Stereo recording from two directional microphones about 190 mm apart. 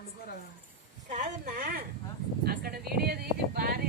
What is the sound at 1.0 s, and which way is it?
Speech, 40° right (ahead or behind).